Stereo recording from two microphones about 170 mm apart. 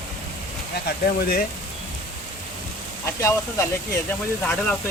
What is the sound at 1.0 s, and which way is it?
Speech, 70° left (ahead or behind).